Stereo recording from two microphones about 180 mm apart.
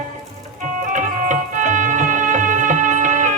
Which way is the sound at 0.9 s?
45° right (ahead or behind).